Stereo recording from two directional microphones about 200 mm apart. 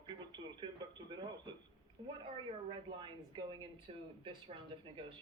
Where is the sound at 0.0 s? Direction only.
20° right (ahead or behind).